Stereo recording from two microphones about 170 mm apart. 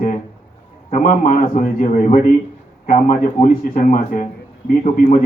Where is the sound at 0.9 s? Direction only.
50° left (ahead or behind).